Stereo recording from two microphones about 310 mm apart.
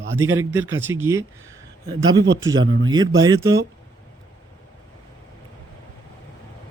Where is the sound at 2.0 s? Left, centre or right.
Right.